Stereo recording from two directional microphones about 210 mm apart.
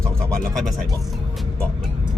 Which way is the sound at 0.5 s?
Centre (ahead or behind).